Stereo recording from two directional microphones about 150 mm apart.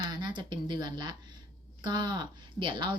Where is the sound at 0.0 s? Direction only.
30° right (ahead or behind).